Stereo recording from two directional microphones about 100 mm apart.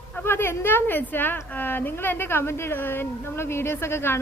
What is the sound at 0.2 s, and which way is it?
A woman's voice, 20° left (ahead or behind).